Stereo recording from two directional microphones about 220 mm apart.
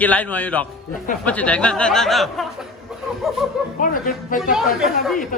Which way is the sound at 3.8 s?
40° left (ahead or behind).